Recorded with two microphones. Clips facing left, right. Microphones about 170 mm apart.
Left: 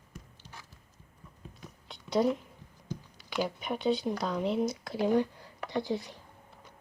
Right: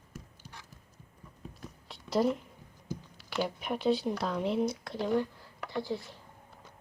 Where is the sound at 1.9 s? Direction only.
Centre (ahead or behind).